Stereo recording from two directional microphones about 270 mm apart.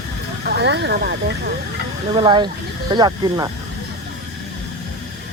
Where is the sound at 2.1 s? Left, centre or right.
Centre.